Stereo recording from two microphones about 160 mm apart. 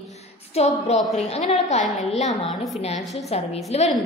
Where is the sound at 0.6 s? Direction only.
40° left (ahead or behind).